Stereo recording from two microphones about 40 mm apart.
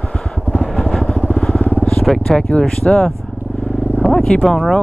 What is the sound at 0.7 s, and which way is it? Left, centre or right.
Vehicle, centre.